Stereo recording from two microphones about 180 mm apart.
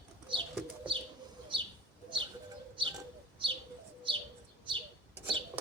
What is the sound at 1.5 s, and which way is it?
Bird, 30° right (ahead or behind).